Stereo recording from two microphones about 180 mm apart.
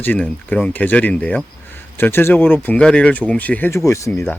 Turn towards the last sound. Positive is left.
turn(degrees=10)  # may be behind; listen again after turning